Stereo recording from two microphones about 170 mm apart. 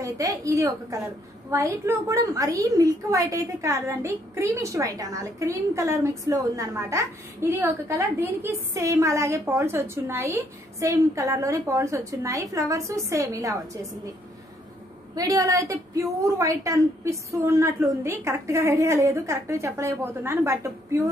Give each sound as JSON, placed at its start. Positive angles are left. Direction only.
{"t": 0.0, "sound": "a woman's voice", "side_deg": -20}
{"t": 15.1, "sound": "a woman's voice", "side_deg": -20}